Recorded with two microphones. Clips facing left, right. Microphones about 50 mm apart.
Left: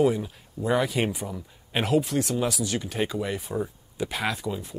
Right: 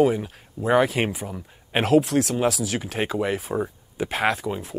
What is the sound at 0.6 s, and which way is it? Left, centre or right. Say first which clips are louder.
Speech: right 3 dB; centre.